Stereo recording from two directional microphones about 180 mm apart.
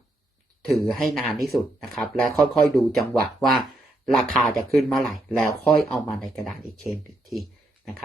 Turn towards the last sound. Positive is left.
turn(degrees=0)  # may be behind; listen again after turning